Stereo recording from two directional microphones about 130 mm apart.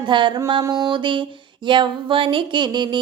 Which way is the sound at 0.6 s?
25° right (ahead or behind).